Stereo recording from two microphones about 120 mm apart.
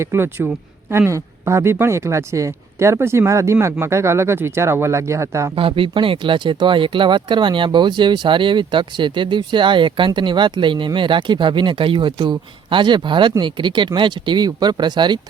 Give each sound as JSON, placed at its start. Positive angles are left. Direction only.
{"t": 0.0, "sound": "speech", "side_deg": -20}
{"t": 5.5, "sound": "speech", "side_deg": -50}